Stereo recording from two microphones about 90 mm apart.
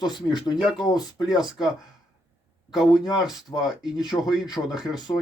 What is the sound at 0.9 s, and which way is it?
Speech, 45° left (ahead or behind).